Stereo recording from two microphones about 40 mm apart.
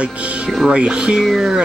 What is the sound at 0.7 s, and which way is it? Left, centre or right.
Speech, right.